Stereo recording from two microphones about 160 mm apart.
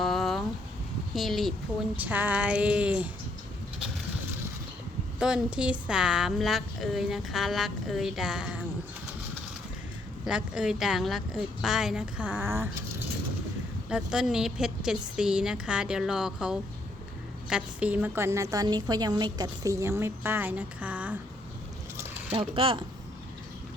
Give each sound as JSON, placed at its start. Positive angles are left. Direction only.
{"t": 0.0, "sound": "a sound", "side_deg": 0}
{"t": 1.1, "sound": "speech", "side_deg": 0}
{"t": 5.2, "sound": "speech", "side_deg": -5}
{"t": 10.2, "sound": "speech", "side_deg": -5}
{"t": 13.9, "sound": "a woman's voice", "side_deg": -5}
{"t": 22.3, "sound": "speech", "side_deg": -35}